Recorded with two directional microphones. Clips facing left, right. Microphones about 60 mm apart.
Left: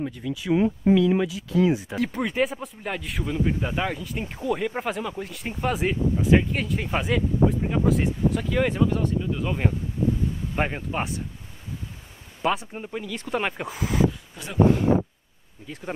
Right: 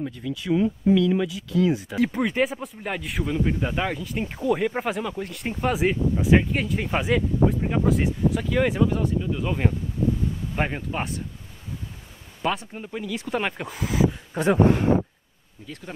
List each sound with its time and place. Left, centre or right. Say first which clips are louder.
0.0 s speech: left 1 dB; centre
0.6 s speech: left 1 dB; left
0.9 s speech: left 1 dB; centre
2.0 s speech: right 2 dB; centre
12.4 s speech: left 1 dB; centre
14.3 s speech: right 15 dB; right
15.6 s speech: left 1 dB; centre